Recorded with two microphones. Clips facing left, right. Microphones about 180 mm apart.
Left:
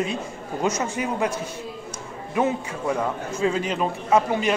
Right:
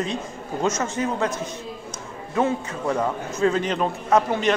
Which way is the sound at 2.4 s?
10° left (ahead or behind).